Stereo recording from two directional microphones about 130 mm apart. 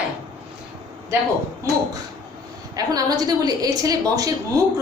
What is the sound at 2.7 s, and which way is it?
A woman's voice, 30° right (ahead or behind).